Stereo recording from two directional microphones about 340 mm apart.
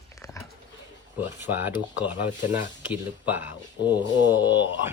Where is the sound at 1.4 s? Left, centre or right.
Centre.